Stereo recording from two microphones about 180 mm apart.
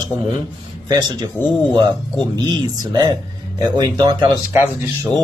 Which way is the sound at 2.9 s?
20° right (ahead or behind).